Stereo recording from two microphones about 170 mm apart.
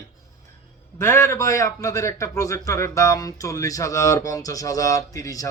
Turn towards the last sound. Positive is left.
turn(degrees=20)  # may be behind; listen again after turning